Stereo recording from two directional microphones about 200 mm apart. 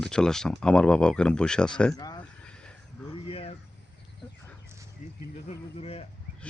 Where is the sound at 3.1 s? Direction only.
30° left (ahead or behind).